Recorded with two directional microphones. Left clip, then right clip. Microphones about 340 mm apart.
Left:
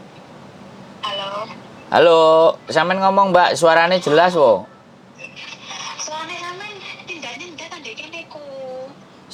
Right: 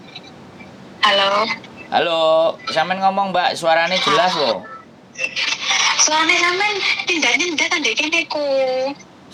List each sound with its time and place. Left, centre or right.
1.0 s speech: right
1.9 s speech: left
5.1 s speech: right